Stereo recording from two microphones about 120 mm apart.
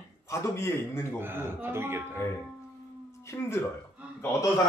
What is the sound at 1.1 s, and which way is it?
Speech, 20° right (ahead or behind).